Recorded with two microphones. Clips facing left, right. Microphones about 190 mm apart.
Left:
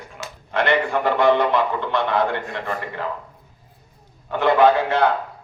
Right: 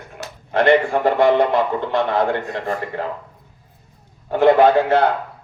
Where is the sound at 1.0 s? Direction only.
50° right (ahead or behind).